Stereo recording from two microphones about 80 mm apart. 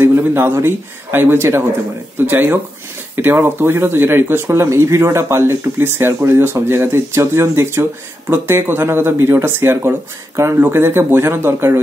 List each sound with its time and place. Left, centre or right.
0.0 s a man's voice: right